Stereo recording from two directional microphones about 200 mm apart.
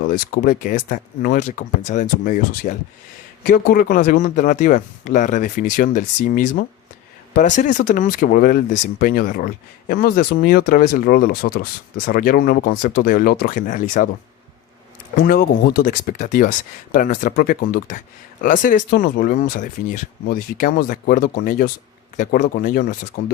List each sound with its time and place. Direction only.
0.0 s speech: 45° left (ahead or behind)
15.2 s speech: 50° left (ahead or behind)